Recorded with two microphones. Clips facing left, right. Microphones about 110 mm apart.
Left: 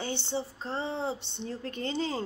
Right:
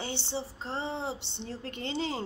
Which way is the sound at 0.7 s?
20° right (ahead or behind).